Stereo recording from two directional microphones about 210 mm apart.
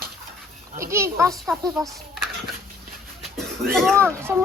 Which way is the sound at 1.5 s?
Centre (ahead or behind).